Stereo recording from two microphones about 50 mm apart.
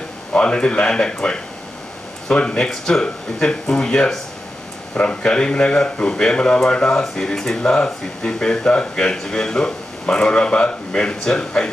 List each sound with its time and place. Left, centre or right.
0.3 s speech: centre
7.0 s speech: centre